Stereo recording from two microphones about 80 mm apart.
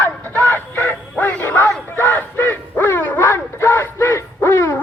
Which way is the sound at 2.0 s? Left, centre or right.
Left.